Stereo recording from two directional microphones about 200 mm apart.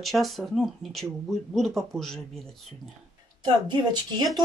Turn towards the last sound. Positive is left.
turn(degrees=-20)  # may be behind; listen again after turning